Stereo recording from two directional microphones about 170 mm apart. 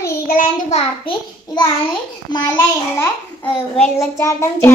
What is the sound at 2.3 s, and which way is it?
Speech, 25° left (ahead or behind).